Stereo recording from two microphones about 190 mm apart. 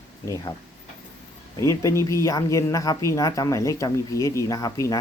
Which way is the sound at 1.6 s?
15° left (ahead or behind).